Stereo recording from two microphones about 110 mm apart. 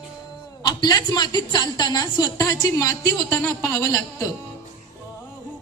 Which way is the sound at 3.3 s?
20° left (ahead or behind).